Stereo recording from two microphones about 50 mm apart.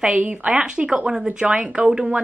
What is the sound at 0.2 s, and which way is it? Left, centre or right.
A woman's voice, right.